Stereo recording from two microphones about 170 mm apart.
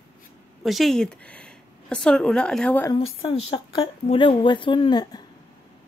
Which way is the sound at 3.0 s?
35° left (ahead or behind).